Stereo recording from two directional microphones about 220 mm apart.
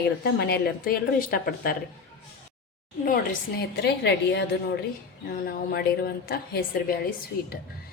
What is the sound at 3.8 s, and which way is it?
A woman's voice, 50° left (ahead or behind).